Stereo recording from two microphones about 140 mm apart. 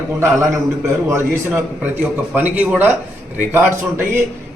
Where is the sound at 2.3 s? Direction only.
10° right (ahead or behind).